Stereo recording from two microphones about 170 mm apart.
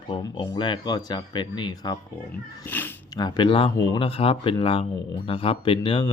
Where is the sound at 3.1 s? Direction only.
25° left (ahead or behind).